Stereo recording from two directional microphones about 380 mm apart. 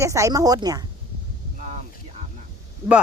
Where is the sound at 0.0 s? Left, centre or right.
Centre.